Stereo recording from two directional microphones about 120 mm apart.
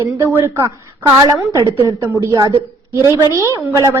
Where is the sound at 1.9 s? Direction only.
20° right (ahead or behind).